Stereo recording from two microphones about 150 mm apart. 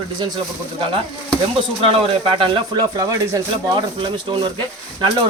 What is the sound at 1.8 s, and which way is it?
A man's voice, 40° right (ahead or behind).